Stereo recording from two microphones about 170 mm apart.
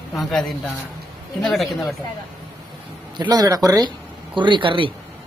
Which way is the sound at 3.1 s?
25° right (ahead or behind).